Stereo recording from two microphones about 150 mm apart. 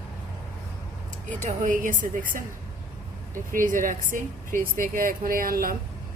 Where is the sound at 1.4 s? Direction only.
55° right (ahead or behind).